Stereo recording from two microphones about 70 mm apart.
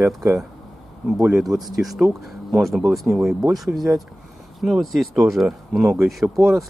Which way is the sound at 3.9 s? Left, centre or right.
Right.